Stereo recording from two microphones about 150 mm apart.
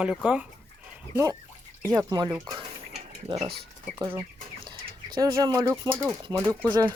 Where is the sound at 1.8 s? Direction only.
25° right (ahead or behind).